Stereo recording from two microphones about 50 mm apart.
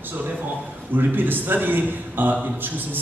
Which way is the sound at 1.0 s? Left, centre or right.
Right.